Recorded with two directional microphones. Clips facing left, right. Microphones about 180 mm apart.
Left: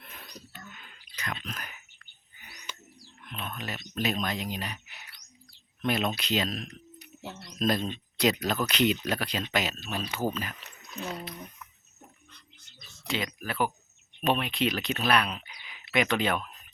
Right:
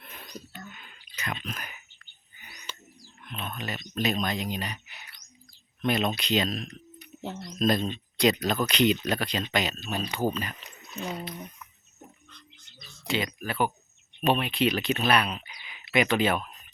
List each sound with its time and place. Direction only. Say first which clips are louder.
0.8 s a sound: right 1 dB; 5° right (ahead or behind)
1.5 s speech: right 2 dB; 5° right (ahead or behind)
3.2 s speech: right 2 dB; centre (ahead or behind)
7.2 s speech: right 5 dB; 20° right (ahead or behind)
7.6 s speech: right 2 dB; 5° left (ahead or behind)
13.1 s speech: right 3 dB; centre (ahead or behind)